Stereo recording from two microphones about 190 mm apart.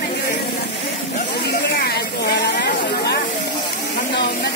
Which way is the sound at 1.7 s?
55° left (ahead or behind).